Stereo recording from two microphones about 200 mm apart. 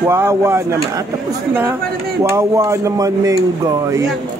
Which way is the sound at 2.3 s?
15° right (ahead or behind).